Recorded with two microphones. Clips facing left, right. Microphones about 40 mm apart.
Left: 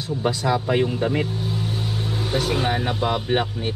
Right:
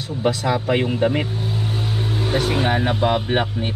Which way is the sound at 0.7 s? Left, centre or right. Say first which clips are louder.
Right 2 dB; right.